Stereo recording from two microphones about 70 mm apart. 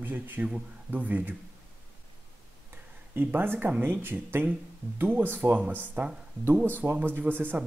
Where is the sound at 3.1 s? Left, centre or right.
Right.